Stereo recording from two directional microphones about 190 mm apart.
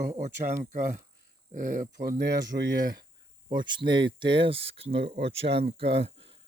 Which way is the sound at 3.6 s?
25° right (ahead or behind).